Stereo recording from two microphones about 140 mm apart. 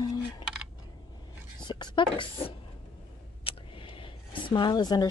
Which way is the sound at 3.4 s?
40° left (ahead or behind).